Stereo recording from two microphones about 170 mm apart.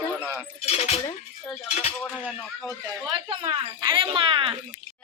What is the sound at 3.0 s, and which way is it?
Speech, 30° right (ahead or behind).